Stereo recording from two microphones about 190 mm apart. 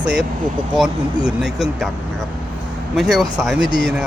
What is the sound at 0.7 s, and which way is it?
Speech, 5° right (ahead or behind).